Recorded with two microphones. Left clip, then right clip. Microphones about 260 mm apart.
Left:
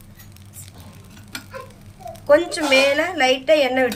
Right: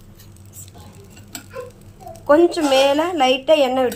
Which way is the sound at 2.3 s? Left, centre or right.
Right.